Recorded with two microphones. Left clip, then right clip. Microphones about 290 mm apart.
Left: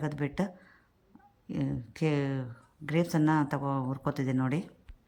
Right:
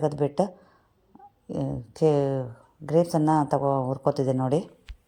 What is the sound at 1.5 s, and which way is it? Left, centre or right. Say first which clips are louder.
Speech: right 6 dB; centre.